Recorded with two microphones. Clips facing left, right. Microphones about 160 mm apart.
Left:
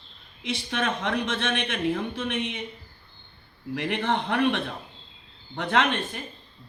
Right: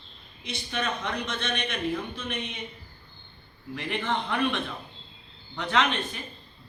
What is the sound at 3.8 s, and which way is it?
A man's voice, 65° left (ahead or behind).